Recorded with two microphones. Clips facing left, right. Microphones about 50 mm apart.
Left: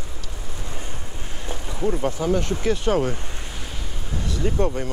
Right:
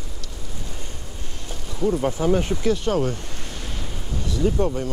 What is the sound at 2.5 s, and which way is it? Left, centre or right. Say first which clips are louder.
Speech: even; centre.